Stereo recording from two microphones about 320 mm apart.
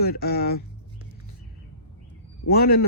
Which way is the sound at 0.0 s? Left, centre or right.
Left.